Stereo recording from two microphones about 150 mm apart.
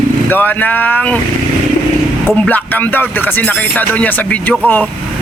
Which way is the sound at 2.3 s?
10° left (ahead or behind).